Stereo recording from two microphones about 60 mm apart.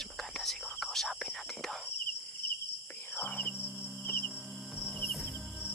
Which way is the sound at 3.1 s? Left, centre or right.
Left.